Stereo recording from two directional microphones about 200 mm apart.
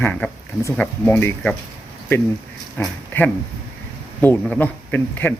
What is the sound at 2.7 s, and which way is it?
Speech, 10° left (ahead or behind).